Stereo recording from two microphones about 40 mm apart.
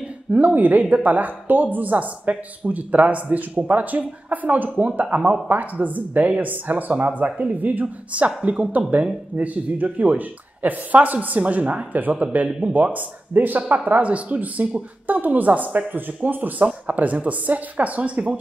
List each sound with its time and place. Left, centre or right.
0.6 s speech: right
8.1 s speech: right